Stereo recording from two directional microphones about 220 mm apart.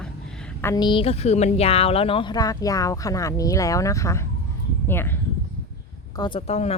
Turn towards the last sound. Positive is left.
turn(degrees=30)  # may be behind; listen again after turning